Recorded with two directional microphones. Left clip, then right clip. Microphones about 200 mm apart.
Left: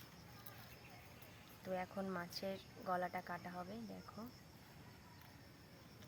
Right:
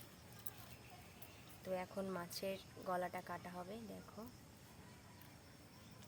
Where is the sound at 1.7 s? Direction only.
20° right (ahead or behind).